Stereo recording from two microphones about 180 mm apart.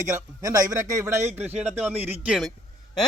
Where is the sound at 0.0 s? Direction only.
15° right (ahead or behind).